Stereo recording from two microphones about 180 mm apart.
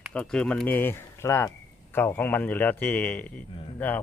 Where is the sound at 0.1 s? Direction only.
5° left (ahead or behind).